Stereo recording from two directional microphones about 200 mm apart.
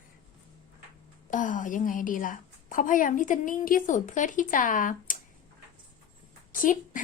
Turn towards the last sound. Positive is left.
turn(degrees=40)  # may be behind; listen again after turning